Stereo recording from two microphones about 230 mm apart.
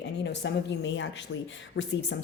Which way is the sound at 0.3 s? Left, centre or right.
Left.